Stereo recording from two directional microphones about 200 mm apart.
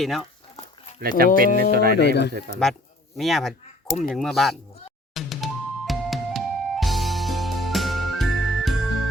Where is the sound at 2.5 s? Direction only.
50° right (ahead or behind).